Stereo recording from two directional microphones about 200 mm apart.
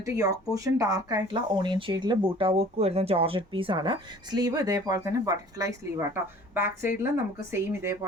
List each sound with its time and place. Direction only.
0.0 s speech: 15° right (ahead or behind)